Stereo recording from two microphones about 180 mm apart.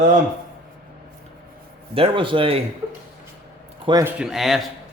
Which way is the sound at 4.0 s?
5° right (ahead or behind).